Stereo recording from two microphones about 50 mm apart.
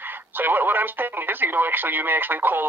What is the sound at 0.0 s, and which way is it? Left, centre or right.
Speech, right.